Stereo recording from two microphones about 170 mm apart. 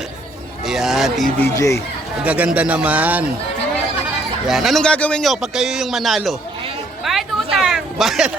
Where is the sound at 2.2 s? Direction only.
5° right (ahead or behind).